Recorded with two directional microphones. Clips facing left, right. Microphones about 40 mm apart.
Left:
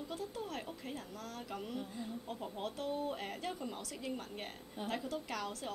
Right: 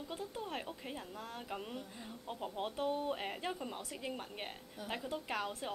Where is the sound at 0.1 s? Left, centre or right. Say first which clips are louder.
Right 1 dB; right.